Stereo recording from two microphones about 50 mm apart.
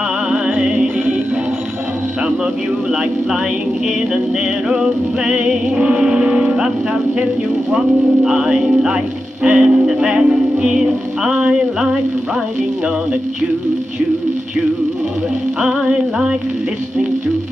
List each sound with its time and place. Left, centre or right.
0.3 s music: centre
2.9 s music: centre
4.6 s music: centre
7.7 s music: centre
15.6 s music: centre